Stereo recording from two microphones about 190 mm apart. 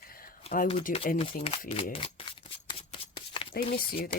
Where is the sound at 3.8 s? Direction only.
50° left (ahead or behind).